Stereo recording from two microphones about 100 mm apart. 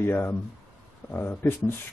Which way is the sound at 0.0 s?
20° left (ahead or behind).